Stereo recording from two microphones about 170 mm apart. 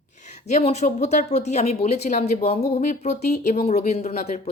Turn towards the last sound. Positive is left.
turn(degrees=40)  # may be behind; listen again after turning